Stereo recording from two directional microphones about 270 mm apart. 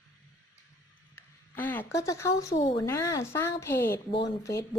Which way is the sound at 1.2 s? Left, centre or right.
Centre.